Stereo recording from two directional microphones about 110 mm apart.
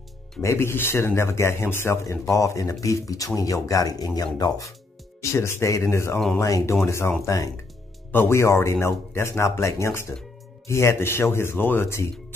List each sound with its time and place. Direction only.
0.4 s a man's voice: 25° left (ahead or behind)